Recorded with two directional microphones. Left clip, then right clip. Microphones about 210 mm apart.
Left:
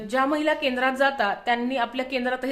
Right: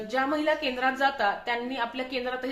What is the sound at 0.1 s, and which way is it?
A woman's voice, 55° left (ahead or behind).